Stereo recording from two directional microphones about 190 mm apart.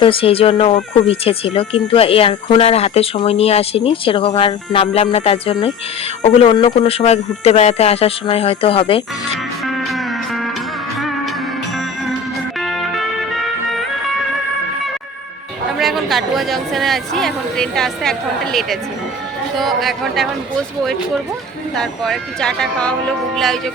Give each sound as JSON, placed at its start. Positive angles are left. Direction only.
{"t": 0.0, "sound": "speech", "side_deg": 30}
{"t": 9.6, "sound": "music", "side_deg": 0}
{"t": 12.5, "sound": "music", "side_deg": 0}
{"t": 15.8, "sound": "speech", "side_deg": 0}
{"t": 21.8, "sound": "speech", "side_deg": 0}